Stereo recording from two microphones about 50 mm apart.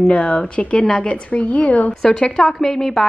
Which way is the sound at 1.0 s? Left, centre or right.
Left.